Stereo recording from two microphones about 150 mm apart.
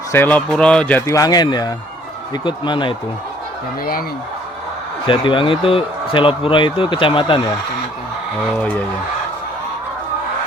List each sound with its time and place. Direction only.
0.1 s speech: 15° left (ahead or behind)
1.0 s speech: 25° left (ahead or behind)
5.0 s speech: 35° left (ahead or behind)
8.5 s speech: 10° left (ahead or behind)